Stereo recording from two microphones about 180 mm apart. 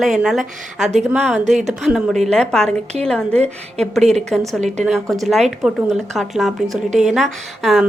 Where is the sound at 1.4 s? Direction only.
40° right (ahead or behind).